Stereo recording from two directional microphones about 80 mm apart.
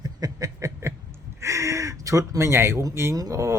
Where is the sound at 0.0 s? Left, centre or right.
Right.